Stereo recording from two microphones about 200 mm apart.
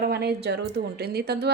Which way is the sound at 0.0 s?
55° right (ahead or behind).